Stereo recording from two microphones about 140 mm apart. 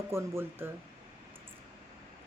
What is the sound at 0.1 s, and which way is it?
Speech, 20° right (ahead or behind).